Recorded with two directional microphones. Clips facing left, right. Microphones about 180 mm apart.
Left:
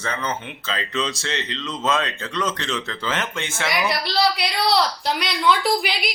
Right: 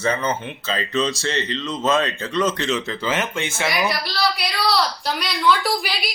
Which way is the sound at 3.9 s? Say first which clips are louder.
Left 2 dB; 25° left (ahead or behind).